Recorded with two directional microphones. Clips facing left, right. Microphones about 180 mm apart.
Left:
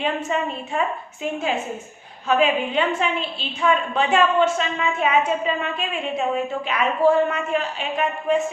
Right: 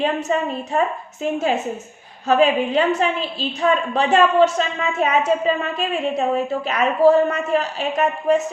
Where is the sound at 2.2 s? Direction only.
40° right (ahead or behind).